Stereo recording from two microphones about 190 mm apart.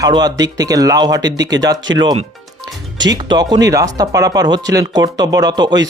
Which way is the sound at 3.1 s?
20° right (ahead or behind).